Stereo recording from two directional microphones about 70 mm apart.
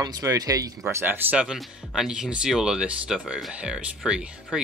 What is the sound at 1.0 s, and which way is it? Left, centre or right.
Speech, right.